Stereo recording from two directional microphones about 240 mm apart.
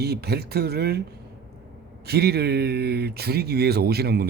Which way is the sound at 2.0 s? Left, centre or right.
Right.